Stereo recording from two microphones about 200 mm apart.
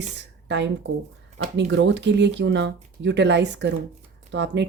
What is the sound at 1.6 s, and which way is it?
Speech, 65° right (ahead or behind).